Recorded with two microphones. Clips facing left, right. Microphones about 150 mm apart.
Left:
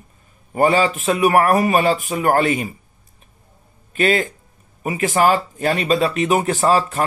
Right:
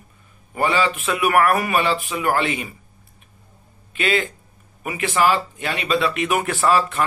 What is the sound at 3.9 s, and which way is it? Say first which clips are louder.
Speech: left 4 dB; 40° left (ahead or behind).